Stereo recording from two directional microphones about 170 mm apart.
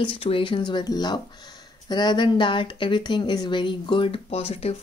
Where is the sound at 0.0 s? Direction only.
30° left (ahead or behind).